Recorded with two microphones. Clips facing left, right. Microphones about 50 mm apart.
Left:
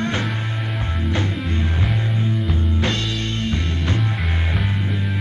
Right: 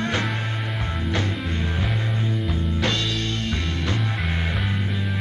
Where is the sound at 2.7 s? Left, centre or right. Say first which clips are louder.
Even; left.